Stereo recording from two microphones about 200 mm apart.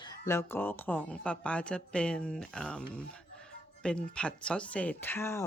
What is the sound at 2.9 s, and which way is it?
Music, 5° left (ahead or behind).